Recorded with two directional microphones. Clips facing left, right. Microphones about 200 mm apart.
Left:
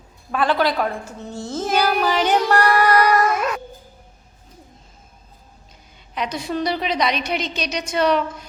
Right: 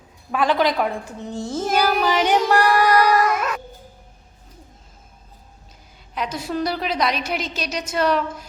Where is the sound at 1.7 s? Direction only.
Centre (ahead or behind).